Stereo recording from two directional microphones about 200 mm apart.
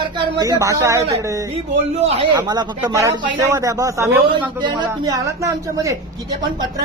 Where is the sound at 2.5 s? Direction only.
15° right (ahead or behind).